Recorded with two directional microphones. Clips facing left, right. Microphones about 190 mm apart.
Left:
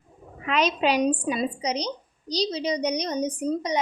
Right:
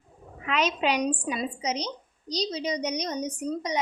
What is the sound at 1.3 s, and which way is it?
A woman's voice, 35° left (ahead or behind).